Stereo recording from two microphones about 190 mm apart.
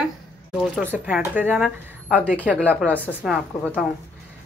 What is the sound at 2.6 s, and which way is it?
A woman's voice, 5° left (ahead or behind).